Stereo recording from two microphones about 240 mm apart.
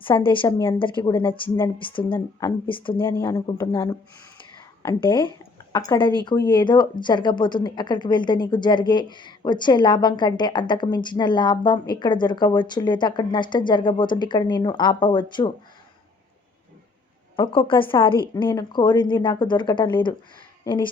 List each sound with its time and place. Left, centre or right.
0.0 s speech: left
17.3 s speech: left